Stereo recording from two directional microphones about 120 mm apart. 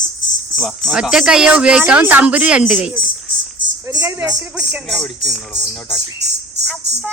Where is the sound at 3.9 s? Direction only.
35° right (ahead or behind).